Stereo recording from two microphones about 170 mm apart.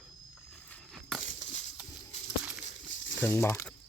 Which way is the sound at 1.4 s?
45° left (ahead or behind).